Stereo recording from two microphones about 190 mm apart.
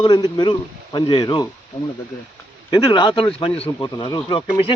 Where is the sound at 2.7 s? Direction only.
25° left (ahead or behind).